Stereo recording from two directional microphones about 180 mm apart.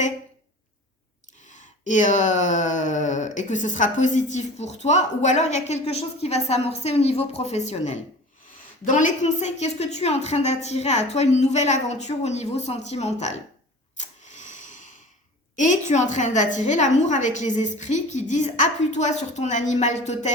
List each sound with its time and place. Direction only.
1.5 s speech: 45° left (ahead or behind)
14.3 s snort: 45° left (ahead or behind)
15.5 s speech: 45° left (ahead or behind)